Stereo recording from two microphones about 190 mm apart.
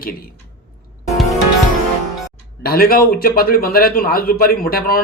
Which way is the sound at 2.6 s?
50° left (ahead or behind).